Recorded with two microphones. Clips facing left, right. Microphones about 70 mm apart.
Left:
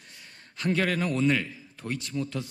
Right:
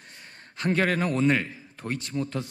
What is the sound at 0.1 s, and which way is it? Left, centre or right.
A man's voice, right.